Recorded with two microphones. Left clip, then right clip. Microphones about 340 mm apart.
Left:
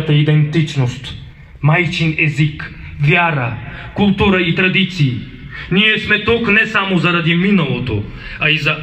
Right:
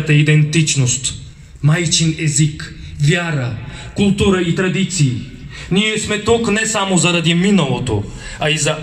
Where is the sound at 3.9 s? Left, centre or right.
Centre.